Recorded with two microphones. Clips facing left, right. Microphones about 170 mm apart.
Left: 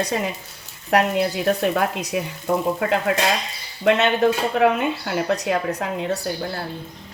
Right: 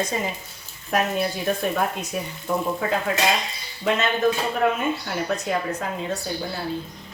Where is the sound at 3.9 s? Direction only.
70° left (ahead or behind).